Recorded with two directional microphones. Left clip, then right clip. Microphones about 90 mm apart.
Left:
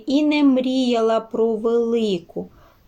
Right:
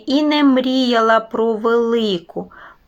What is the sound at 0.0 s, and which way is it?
Speech, 25° left (ahead or behind).